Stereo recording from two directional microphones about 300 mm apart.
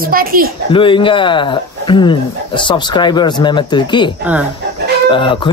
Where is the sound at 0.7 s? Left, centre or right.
Centre.